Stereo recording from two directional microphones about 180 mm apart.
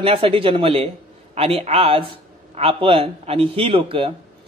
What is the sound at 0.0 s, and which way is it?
Speech, 30° right (ahead or behind).